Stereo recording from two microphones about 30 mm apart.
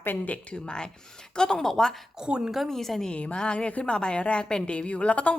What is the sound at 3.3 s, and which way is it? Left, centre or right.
Speech, left.